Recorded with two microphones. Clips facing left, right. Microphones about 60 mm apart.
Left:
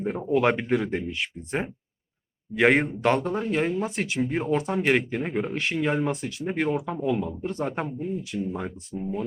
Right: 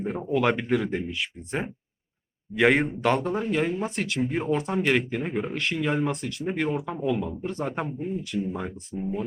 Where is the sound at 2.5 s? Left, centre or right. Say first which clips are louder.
Left 1 dB; centre.